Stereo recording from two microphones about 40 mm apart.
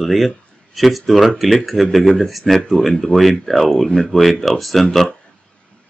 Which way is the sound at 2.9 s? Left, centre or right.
Centre.